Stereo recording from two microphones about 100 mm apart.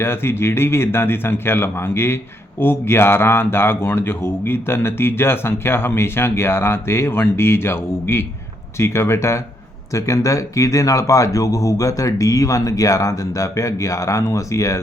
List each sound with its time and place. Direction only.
0.0 s speech: 25° left (ahead or behind)